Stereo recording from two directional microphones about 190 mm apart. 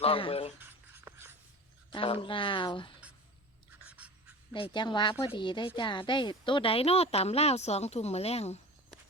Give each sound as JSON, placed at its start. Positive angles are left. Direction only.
{"t": 0.0, "sound": "speech", "side_deg": 30}
{"t": 0.6, "sound": "writing", "side_deg": -10}
{"t": 1.9, "sound": "speech", "side_deg": 30}
{"t": 3.7, "sound": "writing", "side_deg": -5}
{"t": 4.7, "sound": "speech", "side_deg": 25}